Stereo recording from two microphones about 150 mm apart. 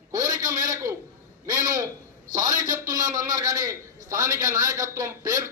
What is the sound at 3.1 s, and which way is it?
A man's voice, 25° right (ahead or behind).